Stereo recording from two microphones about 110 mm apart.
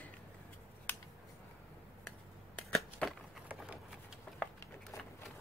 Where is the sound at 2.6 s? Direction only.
10° left (ahead or behind).